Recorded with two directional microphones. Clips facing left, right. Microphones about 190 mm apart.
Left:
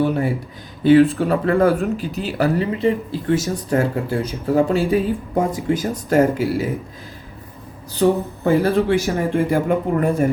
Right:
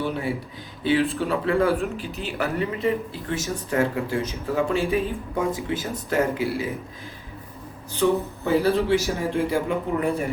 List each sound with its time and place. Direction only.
0.9 s speech: 45° left (ahead or behind)
1.8 s speech: 40° left (ahead or behind)
8.0 s speech: 45° left (ahead or behind)